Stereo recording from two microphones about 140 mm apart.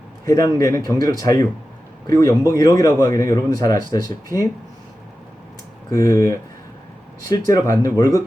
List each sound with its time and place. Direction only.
0.3 s speech: 25° left (ahead or behind)
4.3 s speech: 20° right (ahead or behind)
5.9 s speech: 25° left (ahead or behind)